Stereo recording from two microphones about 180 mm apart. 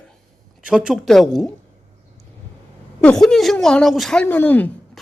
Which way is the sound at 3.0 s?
5° left (ahead or behind).